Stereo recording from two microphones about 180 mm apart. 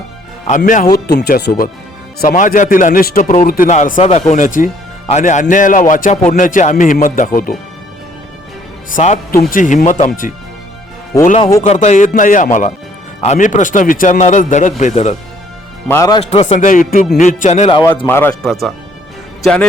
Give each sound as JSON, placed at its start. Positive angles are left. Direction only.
{"t": 0.4, "sound": "speech", "side_deg": 45}
{"t": 0.9, "sound": "speech", "side_deg": 60}
{"t": 2.2, "sound": "speech", "side_deg": 50}
{"t": 3.7, "sound": "speech", "side_deg": 45}
{"t": 9.0, "sound": "speech", "side_deg": 35}
{"t": 9.3, "sound": "speech", "side_deg": 55}
{"t": 11.6, "sound": "speech", "side_deg": 40}
{"t": 15.9, "sound": "a man's voice", "side_deg": 20}
{"t": 16.3, "sound": "speech", "side_deg": 40}
{"t": 18.0, "sound": "speech", "side_deg": 10}